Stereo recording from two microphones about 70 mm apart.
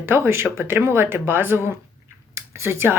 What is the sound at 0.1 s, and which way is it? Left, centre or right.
Speech, right.